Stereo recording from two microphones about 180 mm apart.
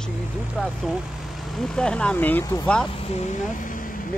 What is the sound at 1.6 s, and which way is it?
Speech, 5° left (ahead or behind).